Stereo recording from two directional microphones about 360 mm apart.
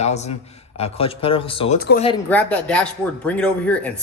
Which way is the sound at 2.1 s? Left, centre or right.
Centre.